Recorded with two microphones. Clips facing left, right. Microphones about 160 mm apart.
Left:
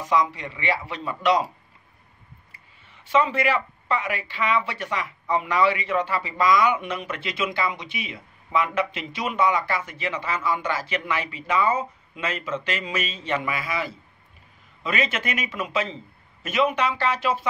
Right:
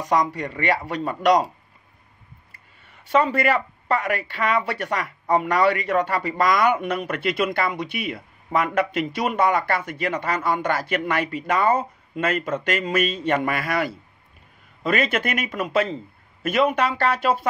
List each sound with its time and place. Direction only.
0.1 s speech: 45° right (ahead or behind)
2.9 s speech: 50° right (ahead or behind)
5.2 s a man's voice: 40° right (ahead or behind)
5.5 s a man's voice: 60° right (ahead or behind)
14.8 s a man's voice: 50° right (ahead or behind)